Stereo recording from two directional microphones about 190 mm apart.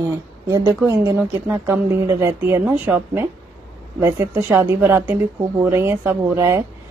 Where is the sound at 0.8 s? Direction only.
10° right (ahead or behind).